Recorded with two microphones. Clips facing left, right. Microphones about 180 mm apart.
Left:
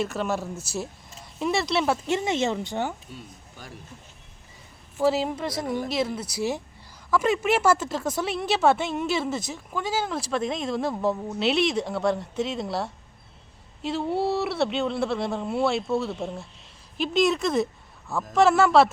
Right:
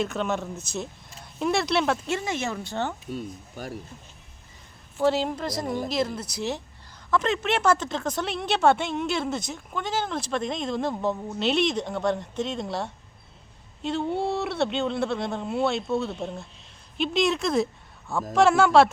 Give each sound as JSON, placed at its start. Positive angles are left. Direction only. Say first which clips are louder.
{"t": 0.0, "sound": "speech", "louder": "even", "side_deg": 5}
{"t": 2.0, "sound": "speech", "louder": "left 4 dB", "side_deg": 20}
{"t": 4.9, "sound": "speech", "louder": "even", "side_deg": 5}